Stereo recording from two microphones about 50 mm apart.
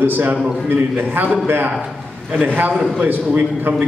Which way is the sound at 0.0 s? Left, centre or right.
Right.